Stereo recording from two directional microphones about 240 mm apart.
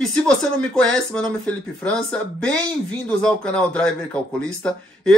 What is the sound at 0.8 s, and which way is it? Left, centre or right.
Speech, centre.